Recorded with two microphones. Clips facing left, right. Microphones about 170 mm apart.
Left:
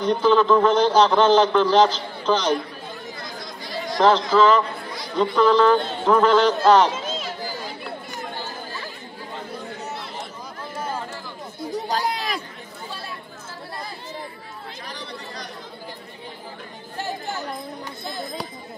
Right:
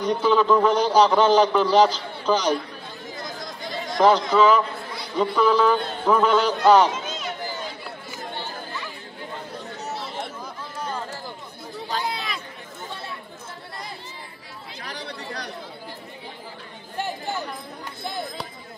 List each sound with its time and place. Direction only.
0.0 s a man's voice: 10° right (ahead or behind)
4.0 s a man's voice: 10° right (ahead or behind)
11.7 s chatter: 45° left (ahead or behind)
15.0 s chatter: 65° right (ahead or behind)